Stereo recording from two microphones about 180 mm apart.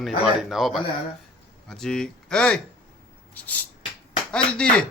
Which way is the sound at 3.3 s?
10° left (ahead or behind).